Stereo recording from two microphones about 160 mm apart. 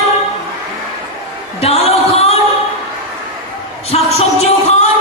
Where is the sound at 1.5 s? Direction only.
40° left (ahead or behind).